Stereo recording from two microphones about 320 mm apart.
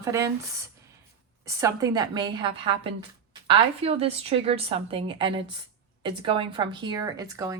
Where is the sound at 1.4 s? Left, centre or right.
Centre.